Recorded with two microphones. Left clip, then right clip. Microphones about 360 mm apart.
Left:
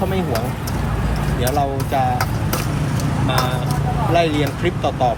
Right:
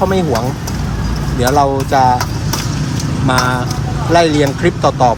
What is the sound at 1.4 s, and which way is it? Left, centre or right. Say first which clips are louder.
Speech: right 9 dB; centre.